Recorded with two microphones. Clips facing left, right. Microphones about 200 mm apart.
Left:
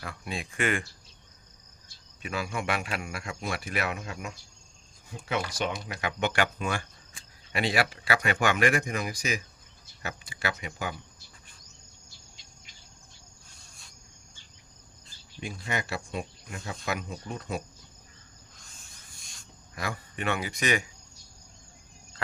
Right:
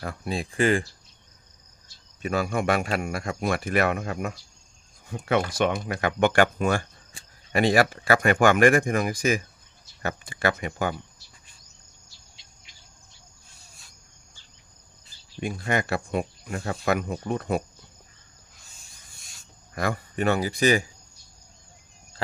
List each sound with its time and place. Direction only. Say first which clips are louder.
0.0 s speech: right 6 dB; 40° right (ahead or behind)
2.2 s speech: right 7 dB; 50° right (ahead or behind)
15.4 s speech: right 7 dB; 55° right (ahead or behind)
19.2 s a sound: left 1 dB; 5° right (ahead or behind)
19.7 s speech: right 8 dB; 50° right (ahead or behind); by 20.9 s 35° right (ahead or behind)